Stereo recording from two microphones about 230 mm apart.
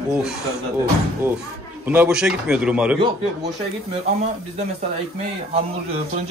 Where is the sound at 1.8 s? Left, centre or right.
Centre.